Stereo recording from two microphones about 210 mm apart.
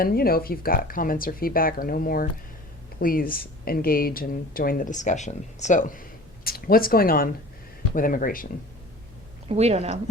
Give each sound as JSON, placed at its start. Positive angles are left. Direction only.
{"t": 0.0, "sound": "speech", "side_deg": 45}
{"t": 9.5, "sound": "speech", "side_deg": -30}